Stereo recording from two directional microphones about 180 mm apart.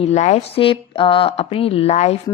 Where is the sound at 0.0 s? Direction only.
40° left (ahead or behind).